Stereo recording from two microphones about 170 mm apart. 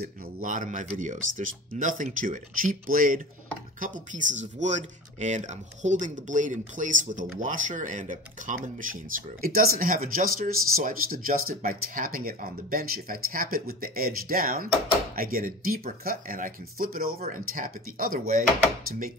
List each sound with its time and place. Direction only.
0.0 s speech: 50° right (ahead or behind)
9.4 s speech: 60° right (ahead or behind)